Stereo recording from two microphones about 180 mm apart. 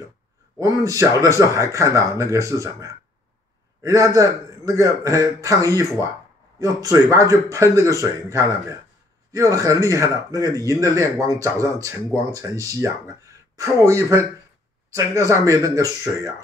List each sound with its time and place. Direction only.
0.6 s speech: 20° right (ahead or behind)